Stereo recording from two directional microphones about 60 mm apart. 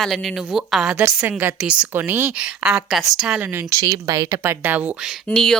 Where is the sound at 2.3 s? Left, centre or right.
Centre.